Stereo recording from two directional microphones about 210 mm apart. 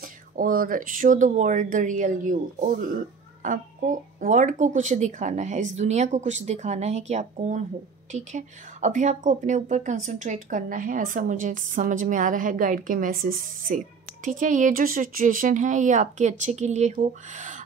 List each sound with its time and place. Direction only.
0.0 s a woman's voice: 40° right (ahead or behind)